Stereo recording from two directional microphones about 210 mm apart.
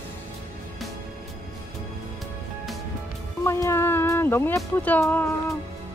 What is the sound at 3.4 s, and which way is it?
Speech, 15° left (ahead or behind).